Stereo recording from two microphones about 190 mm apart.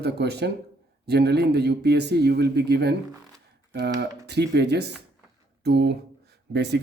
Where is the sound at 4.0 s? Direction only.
60° right (ahead or behind).